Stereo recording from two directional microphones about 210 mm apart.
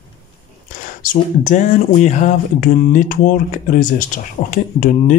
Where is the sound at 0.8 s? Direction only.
40° left (ahead or behind).